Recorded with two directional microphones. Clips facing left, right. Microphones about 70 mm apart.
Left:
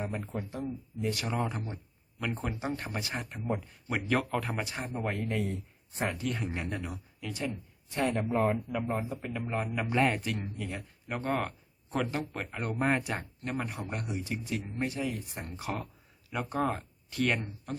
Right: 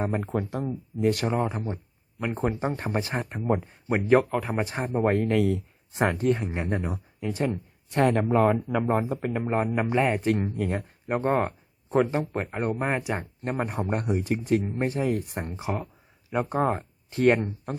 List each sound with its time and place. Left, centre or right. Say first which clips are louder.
0.0 s speech: right 8 dB; right
0.3 s speech: right 7 dB; right
1.3 s speech: right 6 dB; right
4.3 s speech: right 4 dB; centre
4.5 s speech: right 8 dB; right
6.2 s speech: right 9 dB; right
7.3 s speech: right 7 dB; right
8.4 s speech: right 7 dB; right
9.2 s speech: right 8 dB; right
9.9 s speech: right 1 dB; centre
10.3 s speech: right 10 dB; right
11.2 s speech: right 7 dB; right
13.4 s speech: right 7 dB; right
15.4 s speech: right 5 dB; right